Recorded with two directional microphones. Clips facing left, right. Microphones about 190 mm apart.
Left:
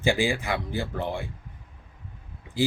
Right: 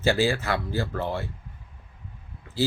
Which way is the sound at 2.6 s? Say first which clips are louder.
Left 1 dB; 15° left (ahead or behind).